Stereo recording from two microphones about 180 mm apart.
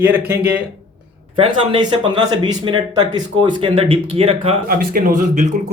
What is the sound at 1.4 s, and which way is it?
Speech, 30° right (ahead or behind).